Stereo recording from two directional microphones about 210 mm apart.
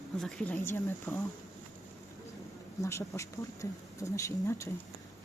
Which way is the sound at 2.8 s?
15° left (ahead or behind).